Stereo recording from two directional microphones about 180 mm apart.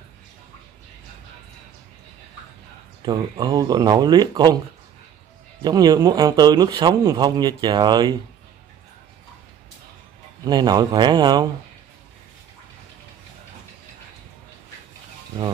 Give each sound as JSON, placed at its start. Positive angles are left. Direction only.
{"t": 3.1, "sound": "speech", "side_deg": -20}
{"t": 5.6, "sound": "speech", "side_deg": -25}
{"t": 10.4, "sound": "speech", "side_deg": -20}